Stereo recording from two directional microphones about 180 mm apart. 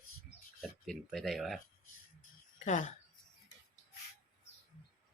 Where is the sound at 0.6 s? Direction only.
Centre (ahead or behind).